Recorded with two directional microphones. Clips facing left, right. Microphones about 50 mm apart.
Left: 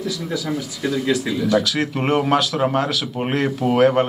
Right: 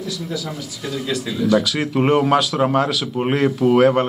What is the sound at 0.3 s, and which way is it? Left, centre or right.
Speech, left.